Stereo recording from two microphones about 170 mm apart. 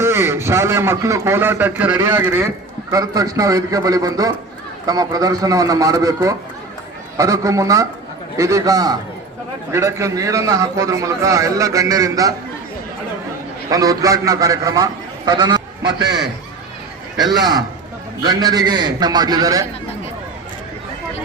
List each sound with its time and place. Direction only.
0.0 s a man's voice: 15° right (ahead or behind)
13.7 s a man's voice: 20° right (ahead or behind)
15.3 s goose: 25° right (ahead or behind)
18.2 s a man's voice: 25° right (ahead or behind)